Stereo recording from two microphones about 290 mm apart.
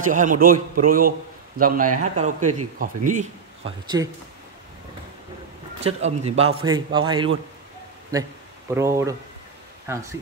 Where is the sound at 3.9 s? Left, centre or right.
Centre.